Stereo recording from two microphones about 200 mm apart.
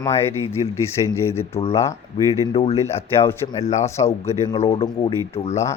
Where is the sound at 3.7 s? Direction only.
35° left (ahead or behind).